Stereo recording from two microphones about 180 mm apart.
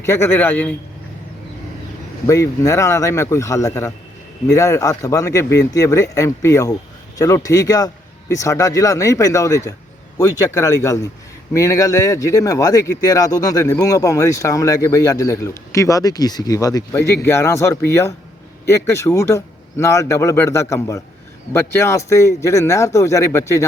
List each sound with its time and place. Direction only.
0.0 s a man's voice: 15° left (ahead or behind)
2.2 s a man's voice: 15° left (ahead or behind)